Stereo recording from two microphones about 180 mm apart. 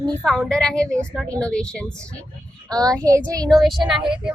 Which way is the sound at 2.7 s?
20° right (ahead or behind).